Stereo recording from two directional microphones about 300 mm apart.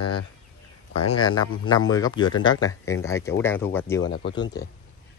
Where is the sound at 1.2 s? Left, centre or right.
Centre.